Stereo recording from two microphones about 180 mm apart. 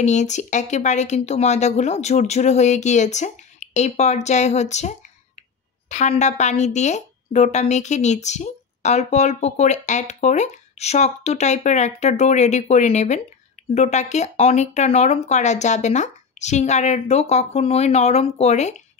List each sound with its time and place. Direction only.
0.0 s a woman's voice: 40° left (ahead or behind)